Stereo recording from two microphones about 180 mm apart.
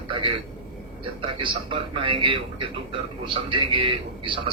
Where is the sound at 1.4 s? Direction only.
25° right (ahead or behind).